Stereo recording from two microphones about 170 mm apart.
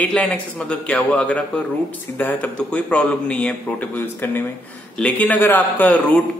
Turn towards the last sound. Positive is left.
turn(degrees=10)  # may be behind; listen again after turning